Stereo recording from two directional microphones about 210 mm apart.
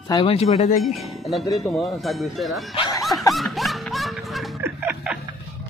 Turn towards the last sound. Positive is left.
turn(degrees=-5)  # may be behind; listen again after turning